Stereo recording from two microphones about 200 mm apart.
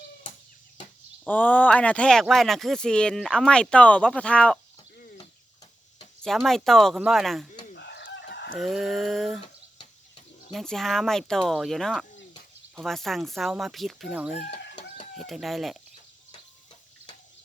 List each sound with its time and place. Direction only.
1.2 s speech: 10° left (ahead or behind)
6.2 s speech: centre (ahead or behind)
7.8 s chicken: 60° left (ahead or behind)
8.5 s speech: centre (ahead or behind)
10.5 s speech: centre (ahead or behind)
14.6 s chicken: 60° left (ahead or behind)
15.2 s speech: centre (ahead or behind)